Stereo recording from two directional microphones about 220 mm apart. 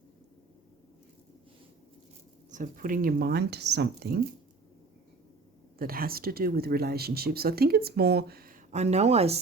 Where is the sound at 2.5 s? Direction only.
35° right (ahead or behind).